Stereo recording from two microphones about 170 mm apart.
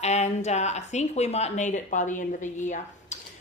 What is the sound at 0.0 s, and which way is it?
Speech, 40° left (ahead or behind).